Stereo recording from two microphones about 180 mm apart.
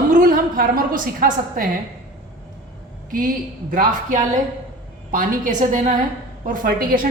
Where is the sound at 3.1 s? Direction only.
50° right (ahead or behind).